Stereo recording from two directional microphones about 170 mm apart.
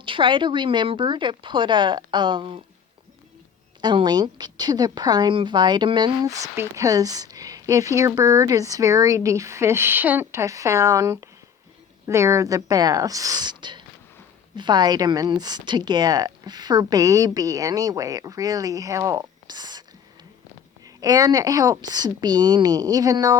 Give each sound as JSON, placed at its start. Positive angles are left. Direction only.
{"t": 0.0, "sound": "a woman's voice", "side_deg": -30}
{"t": 3.8, "sound": "a woman's voice", "side_deg": -25}
{"t": 20.8, "sound": "a woman's voice", "side_deg": -20}